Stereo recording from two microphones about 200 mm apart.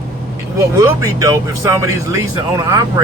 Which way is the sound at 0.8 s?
15° right (ahead or behind).